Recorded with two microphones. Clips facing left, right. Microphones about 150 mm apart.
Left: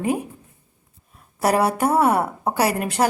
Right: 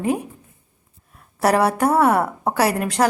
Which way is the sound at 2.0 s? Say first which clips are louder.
Right 2 dB; 5° left (ahead or behind).